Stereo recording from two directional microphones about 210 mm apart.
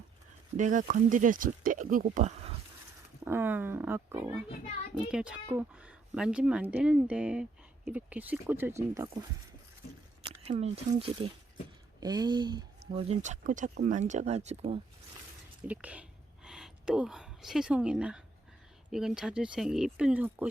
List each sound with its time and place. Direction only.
0.5 s speech: 35° right (ahead or behind)
3.2 s a woman's voice: 10° right (ahead or behind)
10.4 s speech: 30° right (ahead or behind)
11.9 s speech: 20° right (ahead or behind)
15.6 s a sound: 5° right (ahead or behind)
18.9 s a woman's voice: centre (ahead or behind)